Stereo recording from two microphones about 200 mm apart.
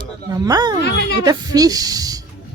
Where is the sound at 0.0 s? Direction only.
20° right (ahead or behind).